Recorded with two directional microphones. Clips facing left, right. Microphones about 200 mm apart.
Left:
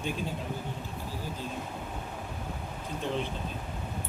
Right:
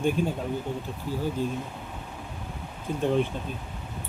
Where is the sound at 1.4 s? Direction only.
50° right (ahead or behind).